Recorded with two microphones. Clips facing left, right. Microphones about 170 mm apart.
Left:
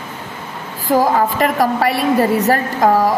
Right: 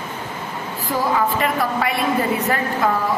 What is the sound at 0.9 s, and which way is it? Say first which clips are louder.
A woman's voice: left 6 dB; 40° left (ahead or behind).